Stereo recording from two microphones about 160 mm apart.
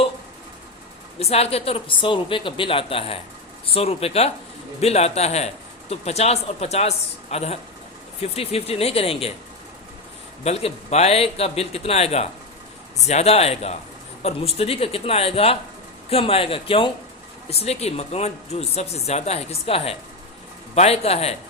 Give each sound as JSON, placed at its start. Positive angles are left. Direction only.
{"t": 1.2, "sound": "speech", "side_deg": 40}
{"t": 10.4, "sound": "speech", "side_deg": 40}